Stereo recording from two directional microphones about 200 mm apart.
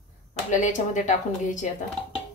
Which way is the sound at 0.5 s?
40° left (ahead or behind).